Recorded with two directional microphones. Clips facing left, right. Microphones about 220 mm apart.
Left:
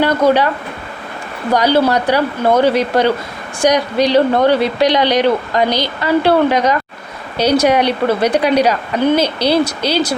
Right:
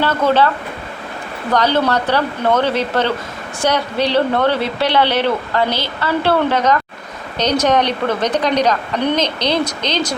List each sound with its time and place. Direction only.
0.0 s speech: 15° left (ahead or behind)
1.5 s speech: 10° left (ahead or behind)